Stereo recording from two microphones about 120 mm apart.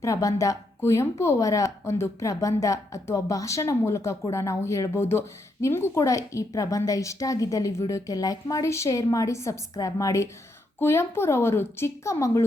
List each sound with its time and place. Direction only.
0.0 s a woman's voice: 30° left (ahead or behind)